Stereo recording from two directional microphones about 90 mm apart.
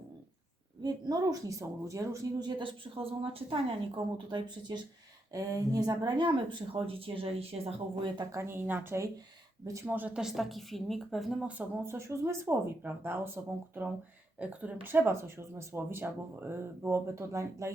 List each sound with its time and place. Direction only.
0.8 s speech: 45° right (ahead or behind)
2.4 s a woman's voice: 65° right (ahead or behind)
5.3 s speech: 40° right (ahead or behind); by 8.1 s 90° right
8.2 s speech: 40° right (ahead or behind)
8.4 s speech: 20° right (ahead or behind)
10.2 s speech: centre (ahead or behind)
11.4 s speech: 20° right (ahead or behind)